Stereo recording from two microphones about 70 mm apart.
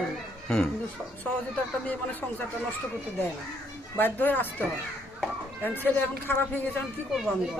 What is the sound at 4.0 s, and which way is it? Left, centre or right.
Speech, left.